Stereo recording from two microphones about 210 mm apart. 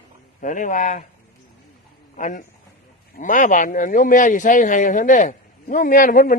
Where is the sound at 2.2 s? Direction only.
40° left (ahead or behind).